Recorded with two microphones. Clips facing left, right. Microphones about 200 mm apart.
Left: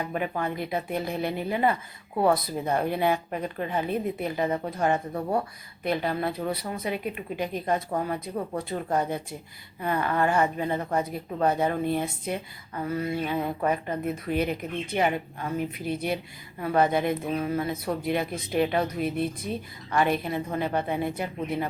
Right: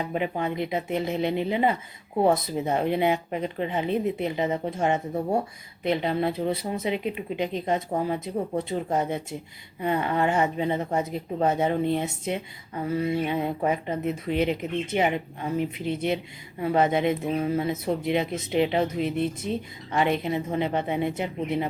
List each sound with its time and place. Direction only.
0.1 s a woman's voice: 20° right (ahead or behind)